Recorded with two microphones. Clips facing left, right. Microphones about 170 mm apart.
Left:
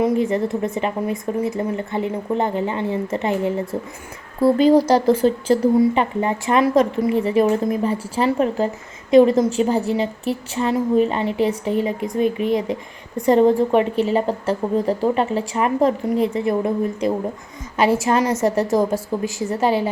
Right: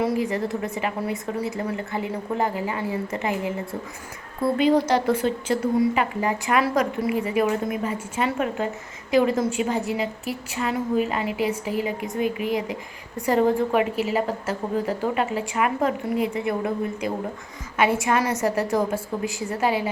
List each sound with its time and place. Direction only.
0.0 s a woman's voice: 25° left (ahead or behind)
4.5 s a woman's voice: 35° left (ahead or behind)